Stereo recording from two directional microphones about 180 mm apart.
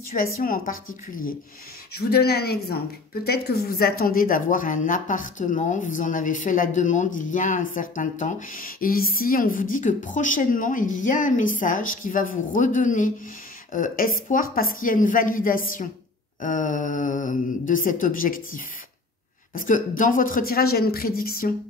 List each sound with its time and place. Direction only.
0.1 s speech: 50° left (ahead or behind)
2.0 s speech: 60° left (ahead or behind)